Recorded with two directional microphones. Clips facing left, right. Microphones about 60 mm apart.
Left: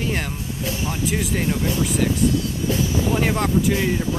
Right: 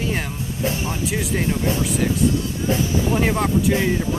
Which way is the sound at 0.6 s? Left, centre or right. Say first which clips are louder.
Right 3 dB; right.